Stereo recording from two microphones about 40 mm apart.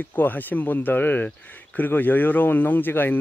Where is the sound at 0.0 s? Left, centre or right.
Left.